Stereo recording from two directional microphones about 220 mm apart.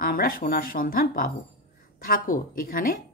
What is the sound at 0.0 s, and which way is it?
Speech, 40° left (ahead or behind).